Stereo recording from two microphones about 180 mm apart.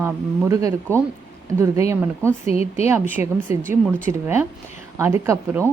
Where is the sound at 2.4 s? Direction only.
35° left (ahead or behind).